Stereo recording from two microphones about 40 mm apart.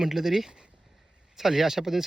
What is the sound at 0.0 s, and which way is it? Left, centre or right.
Speech, centre.